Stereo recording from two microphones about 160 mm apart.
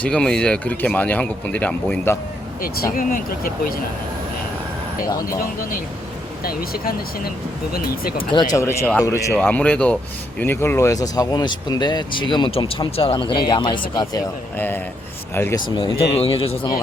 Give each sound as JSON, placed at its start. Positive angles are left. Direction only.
{"t": 0.0, "sound": "speech", "side_deg": 5}
{"t": 2.6, "sound": "speech", "side_deg": 65}
{"t": 6.4, "sound": "speech", "side_deg": 70}
{"t": 8.5, "sound": "speech", "side_deg": 15}
{"t": 14.5, "sound": "speech", "side_deg": 15}
{"t": 15.7, "sound": "speech", "side_deg": 35}